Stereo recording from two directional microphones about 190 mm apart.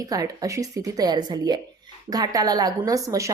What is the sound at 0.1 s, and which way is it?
A woman's voice, 15° right (ahead or behind).